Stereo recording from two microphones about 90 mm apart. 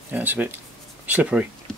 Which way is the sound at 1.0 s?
15° right (ahead or behind).